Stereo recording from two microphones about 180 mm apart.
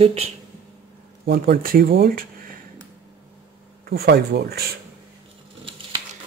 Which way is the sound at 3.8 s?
60° right (ahead or behind).